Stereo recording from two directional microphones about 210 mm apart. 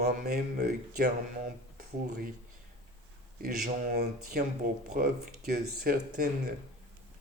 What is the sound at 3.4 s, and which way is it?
Speech, 40° right (ahead or behind).